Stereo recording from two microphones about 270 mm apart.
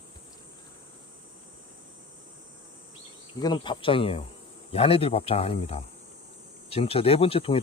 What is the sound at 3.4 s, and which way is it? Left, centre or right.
Speech, centre.